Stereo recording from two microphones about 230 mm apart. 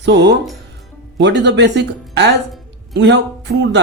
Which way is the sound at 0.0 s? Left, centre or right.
Right.